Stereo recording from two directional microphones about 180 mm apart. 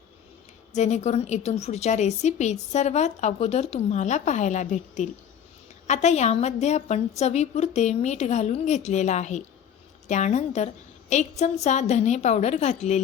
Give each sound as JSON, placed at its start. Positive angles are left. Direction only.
{"t": 0.7, "sound": "a woman's voice", "side_deg": 40}